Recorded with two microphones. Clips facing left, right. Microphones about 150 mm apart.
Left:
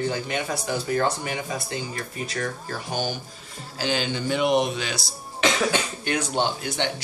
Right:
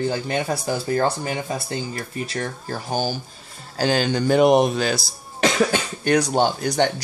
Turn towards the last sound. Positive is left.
turn(degrees=-40)  # may be behind; listen again after turning